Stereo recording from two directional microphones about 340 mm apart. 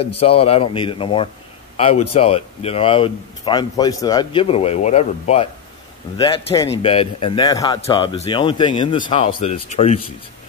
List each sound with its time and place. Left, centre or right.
0.2 s speech: centre